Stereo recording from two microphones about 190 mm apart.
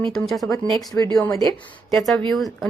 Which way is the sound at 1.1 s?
20° left (ahead or behind).